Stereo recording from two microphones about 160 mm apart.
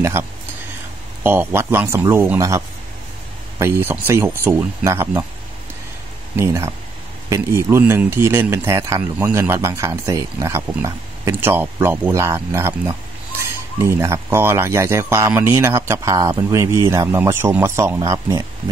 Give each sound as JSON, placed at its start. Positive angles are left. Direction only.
{"t": 0.0, "sound": "speech", "side_deg": -15}
{"t": 6.3, "sound": "speech", "side_deg": -15}